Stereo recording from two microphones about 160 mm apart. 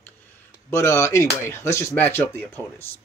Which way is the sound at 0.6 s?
15° left (ahead or behind).